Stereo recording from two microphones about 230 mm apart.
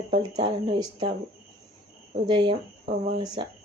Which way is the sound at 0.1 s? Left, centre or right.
Centre.